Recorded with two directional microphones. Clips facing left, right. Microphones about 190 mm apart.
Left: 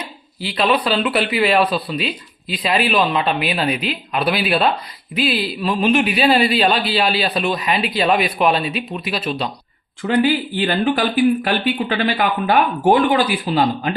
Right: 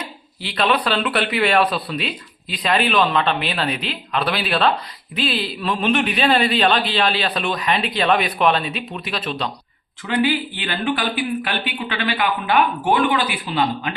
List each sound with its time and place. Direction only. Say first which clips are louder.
0.4 s speech: left 2 dB; 5° left (ahead or behind)
10.0 s speech: left 3 dB; 40° left (ahead or behind)